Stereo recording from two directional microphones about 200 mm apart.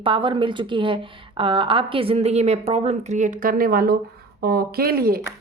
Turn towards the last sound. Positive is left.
turn(degrees=-50)  # may be behind; listen again after turning